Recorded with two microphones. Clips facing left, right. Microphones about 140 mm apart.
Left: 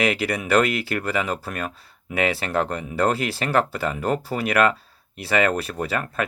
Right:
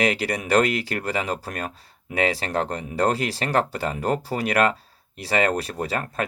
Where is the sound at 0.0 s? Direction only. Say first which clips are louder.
Even; 35° right (ahead or behind).